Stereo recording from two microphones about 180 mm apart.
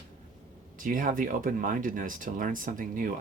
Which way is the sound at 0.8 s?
50° right (ahead or behind).